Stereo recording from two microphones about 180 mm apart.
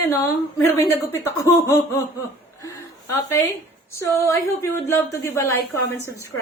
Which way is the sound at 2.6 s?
15° left (ahead or behind).